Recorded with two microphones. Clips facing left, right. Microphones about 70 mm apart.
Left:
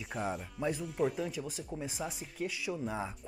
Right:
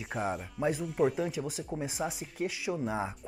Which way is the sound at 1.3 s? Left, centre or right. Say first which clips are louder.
Right 4 dB; centre.